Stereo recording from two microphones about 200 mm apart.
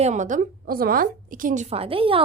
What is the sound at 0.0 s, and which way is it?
Speech, 35° right (ahead or behind).